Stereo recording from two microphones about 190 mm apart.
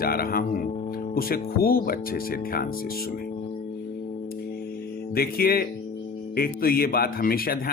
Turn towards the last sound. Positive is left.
turn(degrees=50)  # may be behind; listen again after turning